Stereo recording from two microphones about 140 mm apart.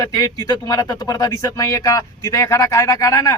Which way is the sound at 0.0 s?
25° left (ahead or behind).